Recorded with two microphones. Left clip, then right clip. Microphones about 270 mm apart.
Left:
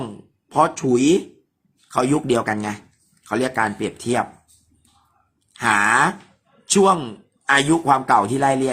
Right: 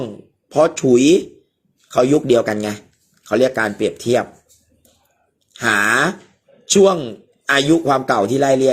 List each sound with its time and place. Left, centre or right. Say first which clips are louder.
0.5 s a man's voice: right 4 dB; centre
5.5 s a man's voice: right 1 dB; centre